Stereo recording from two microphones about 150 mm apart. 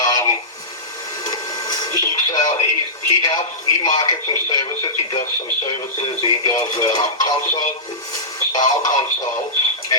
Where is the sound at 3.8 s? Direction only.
25° left (ahead or behind).